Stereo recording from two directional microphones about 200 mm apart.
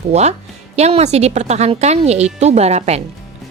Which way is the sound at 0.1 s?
35° right (ahead or behind).